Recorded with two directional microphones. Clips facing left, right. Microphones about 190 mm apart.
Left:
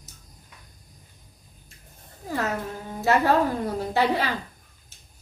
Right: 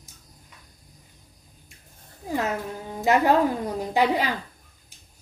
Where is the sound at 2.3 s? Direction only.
15° right (ahead or behind).